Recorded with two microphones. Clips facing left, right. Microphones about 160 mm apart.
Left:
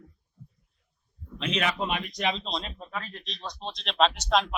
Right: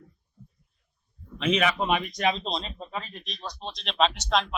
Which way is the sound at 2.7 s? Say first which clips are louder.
Right 1 dB; 20° right (ahead or behind).